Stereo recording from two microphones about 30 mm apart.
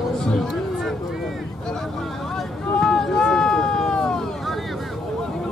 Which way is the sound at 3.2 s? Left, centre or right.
Left.